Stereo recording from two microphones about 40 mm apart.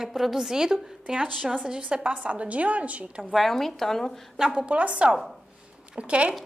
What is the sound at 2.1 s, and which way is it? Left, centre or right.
A woman's voice, right.